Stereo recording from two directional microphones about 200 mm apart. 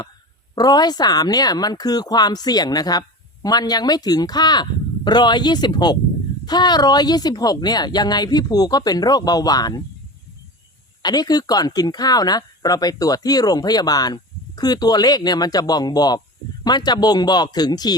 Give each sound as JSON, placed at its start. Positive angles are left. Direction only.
{"t": 0.5, "sound": "speech", "side_deg": 20}
{"t": 11.0, "sound": "speech", "side_deg": 20}